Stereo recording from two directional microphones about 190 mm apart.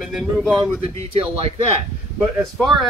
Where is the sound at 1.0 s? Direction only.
30° right (ahead or behind).